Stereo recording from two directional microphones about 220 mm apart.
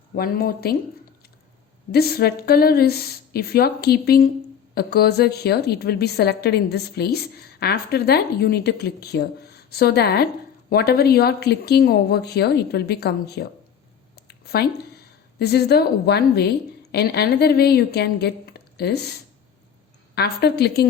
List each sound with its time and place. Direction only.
0.2 s a woman's voice: 40° left (ahead or behind)
1.9 s a woman's voice: 45° left (ahead or behind)
14.2 s a sound: 45° left (ahead or behind)
15.4 s a woman's voice: 45° left (ahead or behind)
20.1 s a woman's voice: 45° left (ahead or behind)